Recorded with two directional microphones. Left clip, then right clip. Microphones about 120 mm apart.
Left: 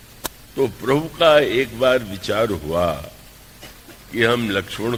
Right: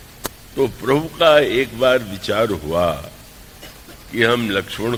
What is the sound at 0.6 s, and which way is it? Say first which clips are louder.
A man's voice: right 2 dB; 40° right (ahead or behind).